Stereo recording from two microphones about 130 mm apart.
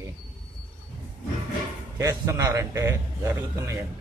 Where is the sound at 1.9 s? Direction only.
25° right (ahead or behind).